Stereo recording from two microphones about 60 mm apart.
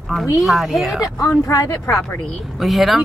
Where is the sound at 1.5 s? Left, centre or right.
Left.